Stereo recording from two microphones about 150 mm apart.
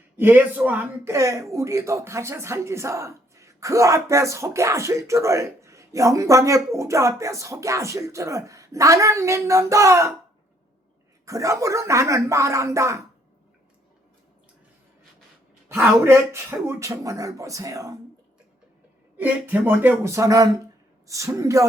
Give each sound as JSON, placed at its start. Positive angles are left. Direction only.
{"t": 0.2, "sound": "speech", "side_deg": -10}
{"t": 11.3, "sound": "speech", "side_deg": -20}
{"t": 15.7, "sound": "speech", "side_deg": -15}
{"t": 19.1, "sound": "speech", "side_deg": -10}